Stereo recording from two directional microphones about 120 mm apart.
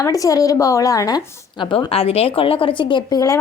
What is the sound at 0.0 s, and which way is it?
A woman's voice, 30° left (ahead or behind).